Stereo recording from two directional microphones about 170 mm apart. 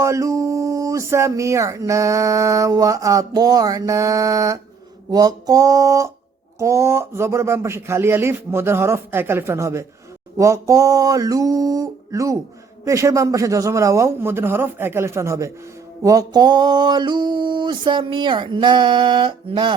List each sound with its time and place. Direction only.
0.0 s speech: 20° right (ahead or behind)